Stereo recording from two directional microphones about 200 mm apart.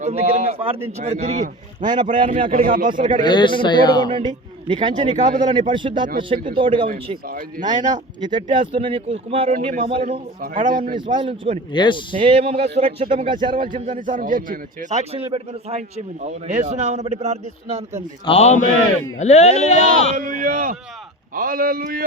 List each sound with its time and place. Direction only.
0.0 s a man's voice: 30° right (ahead or behind)
1.8 s speech: 20° right (ahead or behind)
2.7 s a man's voice: 40° right (ahead or behind)
3.2 s speech: 25° left (ahead or behind)
4.1 s a man's voice: 25° right (ahead or behind)
5.0 s a man's voice: 35° right (ahead or behind)
5.3 s speech: 20° right (ahead or behind)
10.1 s a man's voice: 45° right (ahead or behind)
10.9 s speech: 25° right (ahead or behind)
11.7 s speech: 25° left (ahead or behind)
12.2 s a man's voice: 30° right (ahead or behind)
13.6 s a man's voice: 40° right (ahead or behind)
18.3 s speech: 30° left (ahead or behind)
20.1 s a man's voice: 40° right (ahead or behind)